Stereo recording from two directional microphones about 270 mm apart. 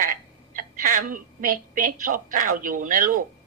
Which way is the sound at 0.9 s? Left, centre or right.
Right.